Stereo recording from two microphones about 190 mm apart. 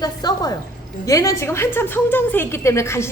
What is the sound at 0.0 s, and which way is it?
A woman's voice, 20° left (ahead or behind).